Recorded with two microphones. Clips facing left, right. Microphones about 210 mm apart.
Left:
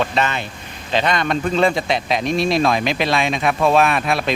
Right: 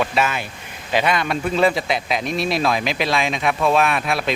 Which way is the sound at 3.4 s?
40° left (ahead or behind).